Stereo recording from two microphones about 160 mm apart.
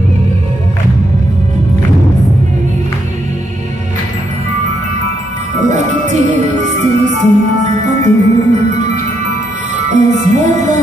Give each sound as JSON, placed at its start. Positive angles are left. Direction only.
{"t": 5.7, "sound": "music", "side_deg": -50}